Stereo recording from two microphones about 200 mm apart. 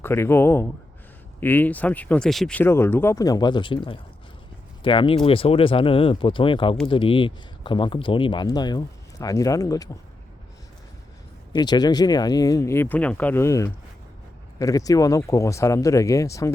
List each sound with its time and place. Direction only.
0.0 s speech: 10° left (ahead or behind)
11.5 s speech: 20° left (ahead or behind)